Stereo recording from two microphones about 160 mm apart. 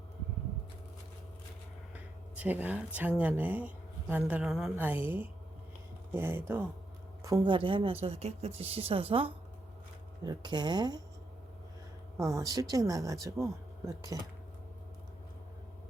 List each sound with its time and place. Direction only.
1.9 s a sound: 10° right (ahead or behind)
3.2 s a woman's voice: 10° right (ahead or behind); by 11.0 s 25° right (ahead or behind)
12.1 s speech: 20° right (ahead or behind)